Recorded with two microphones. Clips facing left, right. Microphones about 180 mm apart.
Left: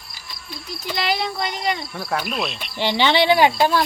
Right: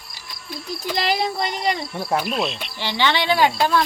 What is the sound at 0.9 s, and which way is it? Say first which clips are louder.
Speech: right 1 dB; 40° right (ahead or behind).